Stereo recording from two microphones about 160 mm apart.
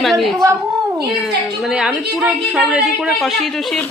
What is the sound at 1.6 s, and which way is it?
Speech, 5° right (ahead or behind).